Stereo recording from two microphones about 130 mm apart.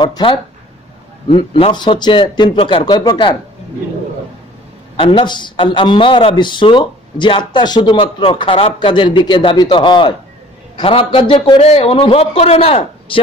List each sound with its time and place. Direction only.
0.0 s a man's voice: 40° left (ahead or behind)
4.9 s a man's voice: 40° left (ahead or behind)
11.6 s a man's voice: 50° left (ahead or behind)